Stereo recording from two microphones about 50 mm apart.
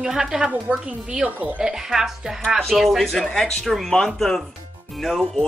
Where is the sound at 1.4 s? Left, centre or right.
Right.